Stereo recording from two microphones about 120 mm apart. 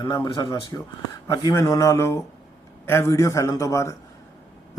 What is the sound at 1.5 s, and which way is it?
Speech, 25° left (ahead or behind).